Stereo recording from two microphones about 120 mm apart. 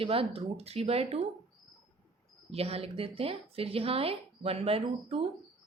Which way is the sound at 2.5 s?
55° right (ahead or behind).